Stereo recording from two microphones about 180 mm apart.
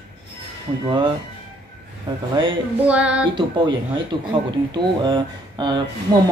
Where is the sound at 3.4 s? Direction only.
25° right (ahead or behind).